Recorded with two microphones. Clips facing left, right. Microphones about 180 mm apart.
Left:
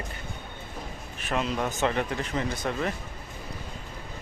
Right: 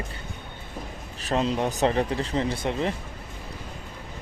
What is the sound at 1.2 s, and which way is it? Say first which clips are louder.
Speech: right 4 dB; 35° right (ahead or behind).